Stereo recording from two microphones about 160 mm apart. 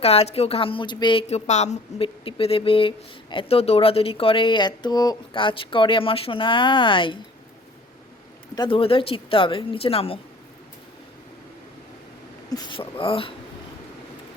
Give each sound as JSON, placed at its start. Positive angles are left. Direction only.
{"t": 0.0, "sound": "speech", "side_deg": 40}
{"t": 1.3, "sound": "speech", "side_deg": 45}
{"t": 8.5, "sound": "speech", "side_deg": 30}
{"t": 12.5, "sound": "speech", "side_deg": 25}